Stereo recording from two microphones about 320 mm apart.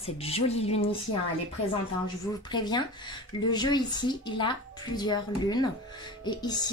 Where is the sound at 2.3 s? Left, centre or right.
Centre.